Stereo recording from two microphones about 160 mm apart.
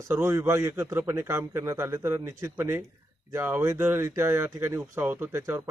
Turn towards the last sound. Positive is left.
turn(degrees=-20)  # may be behind; listen again after turning